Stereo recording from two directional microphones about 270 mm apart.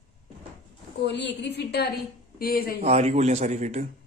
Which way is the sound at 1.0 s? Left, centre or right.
Left.